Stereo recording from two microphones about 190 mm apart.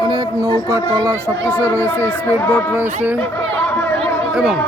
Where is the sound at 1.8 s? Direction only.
10° left (ahead or behind).